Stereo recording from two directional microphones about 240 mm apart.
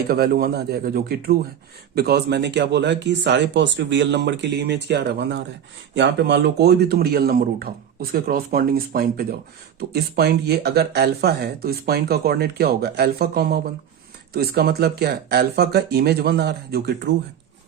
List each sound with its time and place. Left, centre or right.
0.1 s speech: right